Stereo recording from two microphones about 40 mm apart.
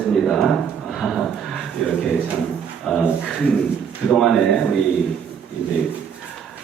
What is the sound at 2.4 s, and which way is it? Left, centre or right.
Drawer open or close, centre.